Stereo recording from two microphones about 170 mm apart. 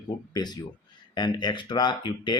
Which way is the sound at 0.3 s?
25° left (ahead or behind).